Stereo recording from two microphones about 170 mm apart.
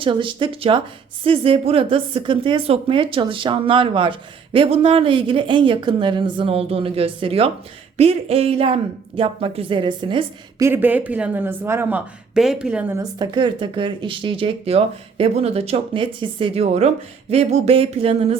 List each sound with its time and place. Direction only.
0.0 s a woman's voice: 30° right (ahead or behind)
10.6 s speech: 10° right (ahead or behind); by 18.3 s 35° right (ahead or behind)